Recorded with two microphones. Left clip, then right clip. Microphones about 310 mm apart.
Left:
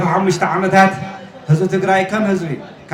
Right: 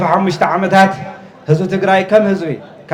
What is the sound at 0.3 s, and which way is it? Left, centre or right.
Speech, right.